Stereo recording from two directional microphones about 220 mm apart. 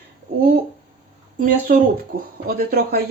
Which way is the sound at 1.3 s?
40° right (ahead or behind).